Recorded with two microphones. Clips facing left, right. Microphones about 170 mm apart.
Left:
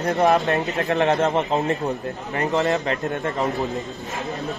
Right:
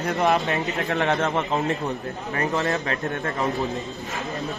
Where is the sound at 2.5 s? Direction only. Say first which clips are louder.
Left 5 dB; 20° left (ahead or behind).